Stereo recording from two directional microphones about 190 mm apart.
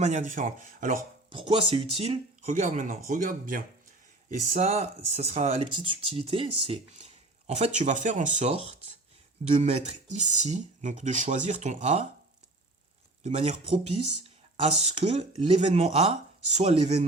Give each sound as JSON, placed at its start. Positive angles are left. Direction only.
{"t": 0.0, "sound": "speech", "side_deg": -40}
{"t": 1.3, "sound": "speech", "side_deg": -30}
{"t": 2.5, "sound": "speech", "side_deg": -45}
{"t": 4.3, "sound": "speech", "side_deg": -35}
{"t": 13.2, "sound": "speech", "side_deg": -35}